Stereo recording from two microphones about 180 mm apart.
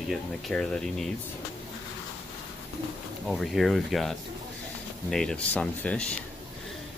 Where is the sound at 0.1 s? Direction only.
5° left (ahead or behind).